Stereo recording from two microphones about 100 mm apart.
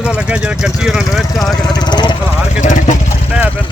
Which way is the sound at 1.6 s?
45° left (ahead or behind).